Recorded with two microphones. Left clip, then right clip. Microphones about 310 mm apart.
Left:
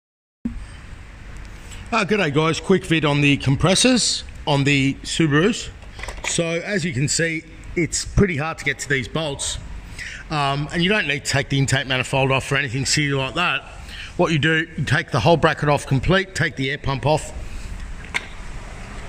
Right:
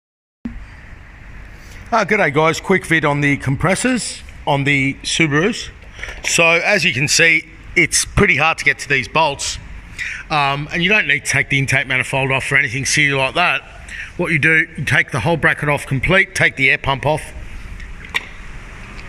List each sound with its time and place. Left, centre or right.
1.9 s a man's voice: centre
7.7 s a man's voice: right
8.3 s a man's voice: centre